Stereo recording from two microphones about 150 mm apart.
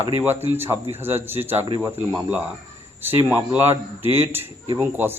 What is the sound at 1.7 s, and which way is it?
Speech, 30° right (ahead or behind).